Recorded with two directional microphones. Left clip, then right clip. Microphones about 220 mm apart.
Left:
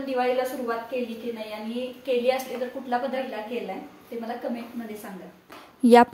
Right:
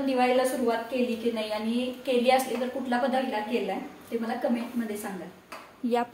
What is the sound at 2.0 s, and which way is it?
Speech, centre (ahead or behind).